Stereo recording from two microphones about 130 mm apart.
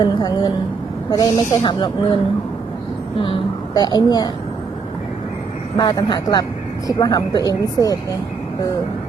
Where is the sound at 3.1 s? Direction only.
40° left (ahead or behind).